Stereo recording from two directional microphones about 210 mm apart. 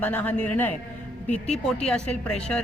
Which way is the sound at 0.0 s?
5° left (ahead or behind).